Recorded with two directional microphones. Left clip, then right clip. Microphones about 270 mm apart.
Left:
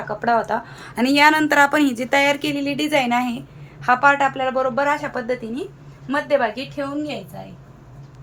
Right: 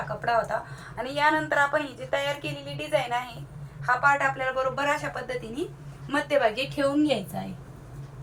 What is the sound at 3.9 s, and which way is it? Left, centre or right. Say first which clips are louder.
A woman's voice: left 7 dB; left.